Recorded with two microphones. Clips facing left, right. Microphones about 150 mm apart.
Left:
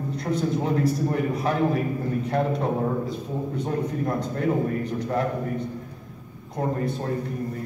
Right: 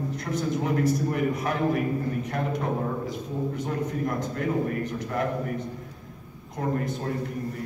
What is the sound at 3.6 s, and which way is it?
A man's voice, 30° left (ahead or behind).